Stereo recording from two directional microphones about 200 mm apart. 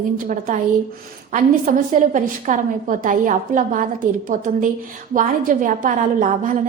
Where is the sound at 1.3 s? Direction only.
40° right (ahead or behind).